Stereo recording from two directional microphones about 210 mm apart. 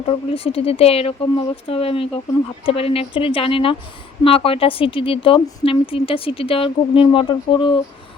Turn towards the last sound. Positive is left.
turn(degrees=25)  # may be behind; listen again after turning